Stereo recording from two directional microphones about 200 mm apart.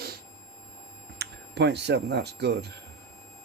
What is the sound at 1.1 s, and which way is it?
Speech, 55° right (ahead or behind).